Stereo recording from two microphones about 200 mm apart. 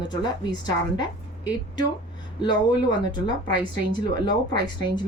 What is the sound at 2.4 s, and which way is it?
Speech, 20° left (ahead or behind).